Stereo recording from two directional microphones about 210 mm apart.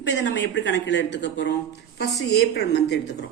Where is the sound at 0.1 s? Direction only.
55° left (ahead or behind).